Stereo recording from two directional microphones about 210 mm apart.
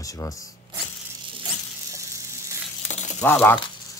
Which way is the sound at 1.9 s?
15° right (ahead or behind).